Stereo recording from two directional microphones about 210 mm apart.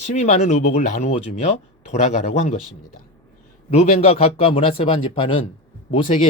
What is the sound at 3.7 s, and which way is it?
A man's voice, 30° left (ahead or behind).